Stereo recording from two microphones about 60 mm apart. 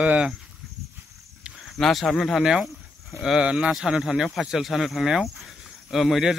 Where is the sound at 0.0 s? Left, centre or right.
Right.